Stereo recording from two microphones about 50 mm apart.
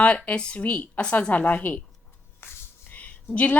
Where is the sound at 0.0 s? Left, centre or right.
Left.